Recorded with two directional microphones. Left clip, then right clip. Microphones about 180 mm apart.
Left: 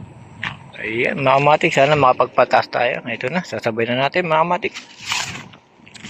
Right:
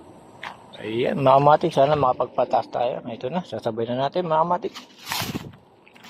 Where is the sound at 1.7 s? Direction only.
35° left (ahead or behind).